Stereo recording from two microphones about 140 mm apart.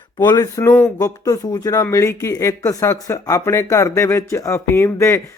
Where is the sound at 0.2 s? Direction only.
25° left (ahead or behind).